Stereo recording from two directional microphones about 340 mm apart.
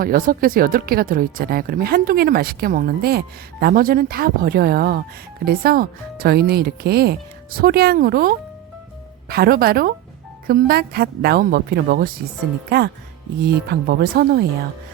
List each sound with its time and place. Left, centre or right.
0.0 s speech: right
9.3 s speech: right
13.4 s speech: right